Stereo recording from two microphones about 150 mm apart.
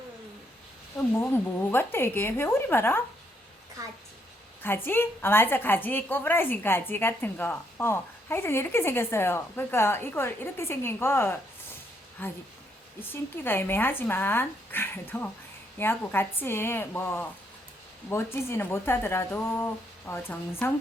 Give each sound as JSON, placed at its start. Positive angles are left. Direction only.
{"t": 1.1, "sound": "a woman's voice", "side_deg": 15}
{"t": 4.6, "sound": "a woman's voice", "side_deg": 15}